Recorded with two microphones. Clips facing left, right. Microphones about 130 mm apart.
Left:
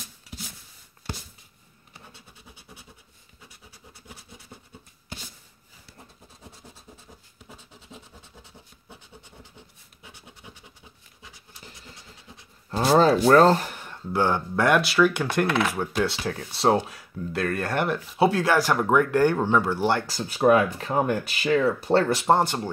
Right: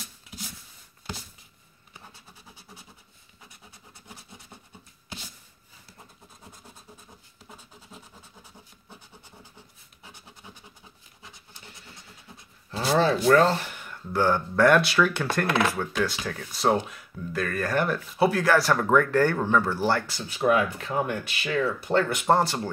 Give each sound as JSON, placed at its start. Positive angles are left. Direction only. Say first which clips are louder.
{"t": 12.7, "sound": "speech", "louder": "left 4 dB", "side_deg": 40}
{"t": 14.1, "sound": "speech", "louder": "even", "side_deg": 20}
{"t": 15.9, "sound": "speech", "louder": "left 2 dB", "side_deg": 30}
{"t": 20.1, "sound": "speech", "louder": "left 4 dB", "side_deg": 40}
{"t": 22.2, "sound": "speech", "louder": "left 1 dB", "side_deg": 20}